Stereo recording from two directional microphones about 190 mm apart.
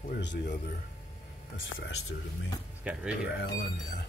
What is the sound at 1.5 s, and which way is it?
Speech, 85° left.